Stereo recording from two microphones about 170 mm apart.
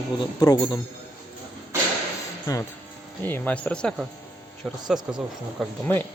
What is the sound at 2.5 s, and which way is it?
A man's voice, 20° left (ahead or behind).